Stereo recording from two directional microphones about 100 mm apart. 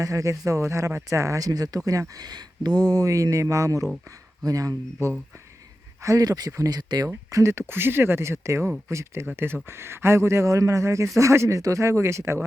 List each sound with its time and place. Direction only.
0.0 s speech: 35° right (ahead or behind)
7.1 s speech: 30° right (ahead or behind)